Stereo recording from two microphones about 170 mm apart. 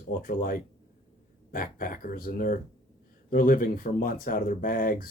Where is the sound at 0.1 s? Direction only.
55° left (ahead or behind).